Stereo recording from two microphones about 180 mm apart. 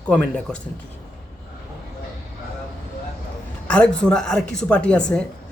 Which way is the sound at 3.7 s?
5° left (ahead or behind).